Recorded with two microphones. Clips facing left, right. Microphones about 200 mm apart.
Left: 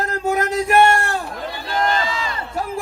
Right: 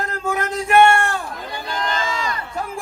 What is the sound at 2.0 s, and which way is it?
Crowd, 45° right (ahead or behind).